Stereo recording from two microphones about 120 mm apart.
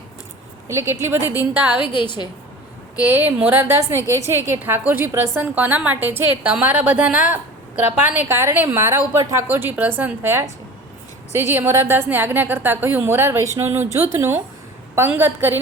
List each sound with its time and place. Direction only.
0.7 s a woman's voice: 20° right (ahead or behind)
1.8 s a woman's voice: 45° left (ahead or behind)
3.1 s a woman's voice: 15° right (ahead or behind)